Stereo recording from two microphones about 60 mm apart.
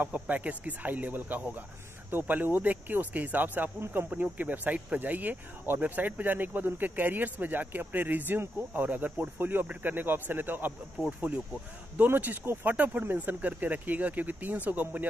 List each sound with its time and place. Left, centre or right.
0.0 s speech: right
3.8 s speech: right
4.1 s speech: right